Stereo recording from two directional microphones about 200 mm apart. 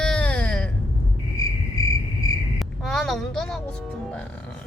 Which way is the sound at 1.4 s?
15° left (ahead or behind).